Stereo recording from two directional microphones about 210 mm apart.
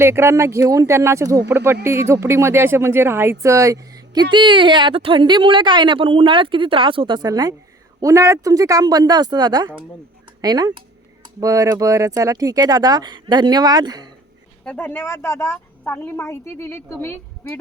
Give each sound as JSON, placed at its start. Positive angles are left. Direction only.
{"t": 0.0, "sound": "speech", "side_deg": -10}
{"t": 14.6, "sound": "a woman's voice", "side_deg": 10}